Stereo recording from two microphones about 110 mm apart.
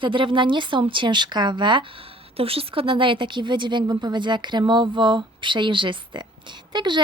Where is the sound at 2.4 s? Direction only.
60° right (ahead or behind).